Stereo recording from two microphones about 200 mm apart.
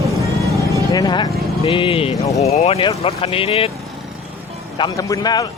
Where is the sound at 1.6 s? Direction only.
25° left (ahead or behind).